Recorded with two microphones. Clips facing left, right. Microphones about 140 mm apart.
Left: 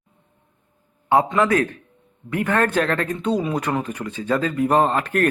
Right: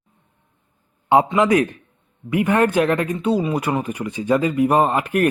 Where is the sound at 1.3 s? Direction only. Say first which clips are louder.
Right 2 dB; 15° right (ahead or behind).